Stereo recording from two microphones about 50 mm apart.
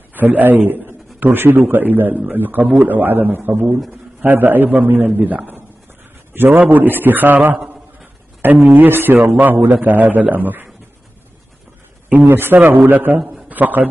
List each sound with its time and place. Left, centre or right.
0.1 s a man's voice: right
8.6 s a man's voice: right
12.1 s a man's voice: right